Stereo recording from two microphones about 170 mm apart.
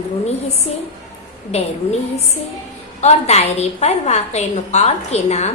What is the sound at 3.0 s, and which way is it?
A woman's voice, 40° left (ahead or behind).